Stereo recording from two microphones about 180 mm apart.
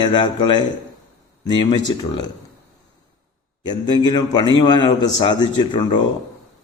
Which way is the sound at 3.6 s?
25° left (ahead or behind).